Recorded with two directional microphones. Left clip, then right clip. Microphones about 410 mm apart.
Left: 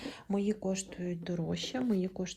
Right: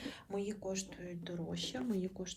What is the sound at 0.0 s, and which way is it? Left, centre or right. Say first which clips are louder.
Speech: left 5 dB; centre.